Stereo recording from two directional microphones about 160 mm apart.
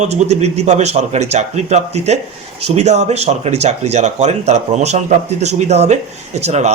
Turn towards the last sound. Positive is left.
turn(degrees=-45)  # may be behind; listen again after turning